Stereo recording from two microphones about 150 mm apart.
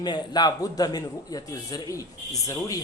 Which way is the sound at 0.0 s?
25° left (ahead or behind).